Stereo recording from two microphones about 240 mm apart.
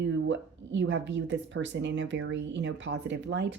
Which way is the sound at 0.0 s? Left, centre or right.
Right.